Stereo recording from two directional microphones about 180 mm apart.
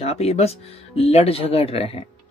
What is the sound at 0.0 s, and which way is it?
Speech, 35° left (ahead or behind).